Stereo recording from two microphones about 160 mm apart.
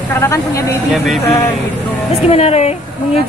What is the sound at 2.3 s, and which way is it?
Speech, 40° left (ahead or behind).